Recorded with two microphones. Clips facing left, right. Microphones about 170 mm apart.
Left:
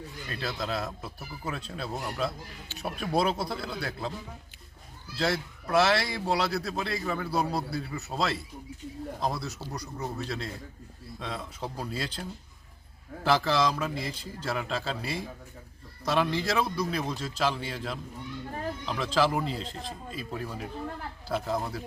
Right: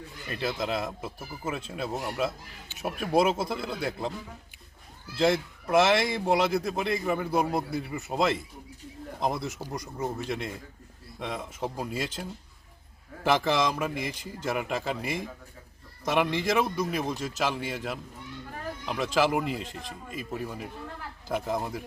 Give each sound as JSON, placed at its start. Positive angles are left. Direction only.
{"t": 0.3, "sound": "speech", "side_deg": -15}
{"t": 5.1, "sound": "a man's voice", "side_deg": -20}